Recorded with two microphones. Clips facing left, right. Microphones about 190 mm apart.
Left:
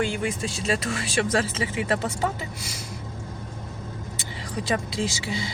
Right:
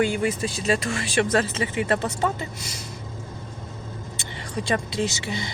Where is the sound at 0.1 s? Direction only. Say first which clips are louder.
Right 4 dB; 45° right (ahead or behind).